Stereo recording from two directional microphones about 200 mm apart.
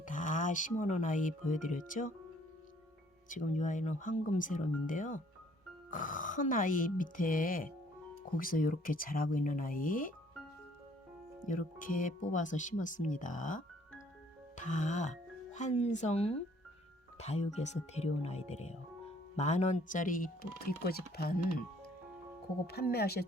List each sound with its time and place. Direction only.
0.0 s speech: 40° left (ahead or behind)
3.2 s speech: 40° left (ahead or behind)
11.4 s speech: 40° left (ahead or behind)
22.6 s speech: 50° left (ahead or behind)